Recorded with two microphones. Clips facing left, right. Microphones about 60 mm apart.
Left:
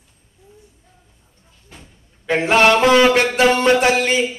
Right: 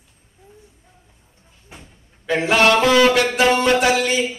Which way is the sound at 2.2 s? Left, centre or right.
Left.